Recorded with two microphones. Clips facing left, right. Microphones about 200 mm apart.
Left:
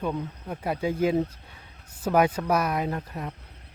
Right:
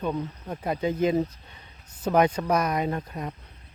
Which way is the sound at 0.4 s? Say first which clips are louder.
Even; 5° left (ahead or behind).